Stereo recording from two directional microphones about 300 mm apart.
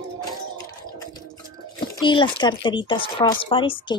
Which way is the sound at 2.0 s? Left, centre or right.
Centre.